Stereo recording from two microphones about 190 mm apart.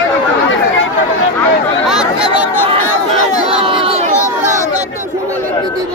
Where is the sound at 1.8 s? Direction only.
5° right (ahead or behind).